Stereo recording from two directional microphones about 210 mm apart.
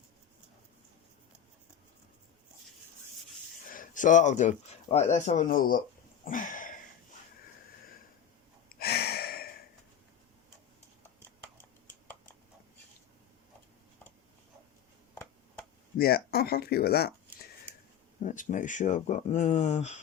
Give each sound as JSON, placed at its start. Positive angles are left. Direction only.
{"t": 3.7, "sound": "speech", "side_deg": 40}
{"t": 6.2, "sound": "a sound", "side_deg": 40}
{"t": 8.7, "sound": "gasp", "side_deg": 50}
{"t": 15.1, "sound": "a sound", "side_deg": 10}
{"t": 16.0, "sound": "speech", "side_deg": 45}
{"t": 18.2, "sound": "speech", "side_deg": 35}